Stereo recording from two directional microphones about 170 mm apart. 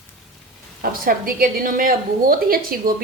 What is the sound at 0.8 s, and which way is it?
A woman's voice, 60° right (ahead or behind).